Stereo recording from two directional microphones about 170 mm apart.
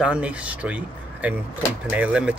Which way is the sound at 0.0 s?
5° right (ahead or behind).